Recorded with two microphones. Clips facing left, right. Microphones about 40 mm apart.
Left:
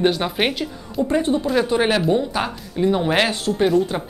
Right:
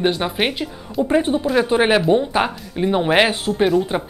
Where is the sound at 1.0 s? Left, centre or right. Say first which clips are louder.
Right 2 dB; centre.